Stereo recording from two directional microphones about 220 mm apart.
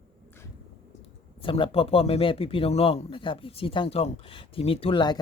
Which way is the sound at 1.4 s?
25° left (ahead or behind).